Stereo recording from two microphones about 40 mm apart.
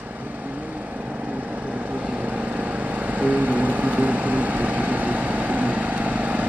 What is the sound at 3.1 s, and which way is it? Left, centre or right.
Vehicle, right.